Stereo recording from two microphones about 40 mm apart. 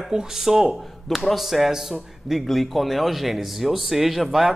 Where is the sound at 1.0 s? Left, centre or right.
Centre.